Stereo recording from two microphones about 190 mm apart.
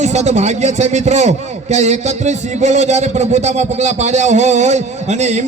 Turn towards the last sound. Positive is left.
turn(degrees=-35)  # may be behind; listen again after turning